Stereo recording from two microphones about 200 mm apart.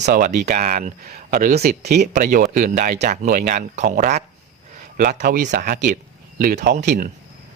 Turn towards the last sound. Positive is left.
turn(degrees=-45)  # may be behind; listen again after turning